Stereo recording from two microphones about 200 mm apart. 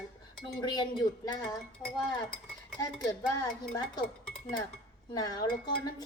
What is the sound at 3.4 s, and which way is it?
Music, 20° left (ahead or behind).